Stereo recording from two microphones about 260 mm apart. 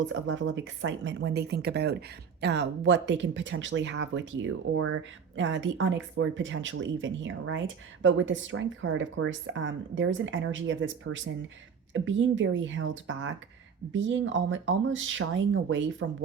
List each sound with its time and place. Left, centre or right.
0.0 s speech: right